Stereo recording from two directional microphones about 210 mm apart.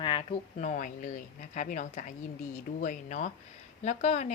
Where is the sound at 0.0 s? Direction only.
25° left (ahead or behind).